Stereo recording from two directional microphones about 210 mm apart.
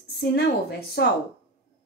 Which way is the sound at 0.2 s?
50° left (ahead or behind).